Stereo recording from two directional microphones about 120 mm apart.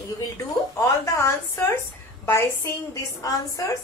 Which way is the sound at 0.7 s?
25° left (ahead or behind).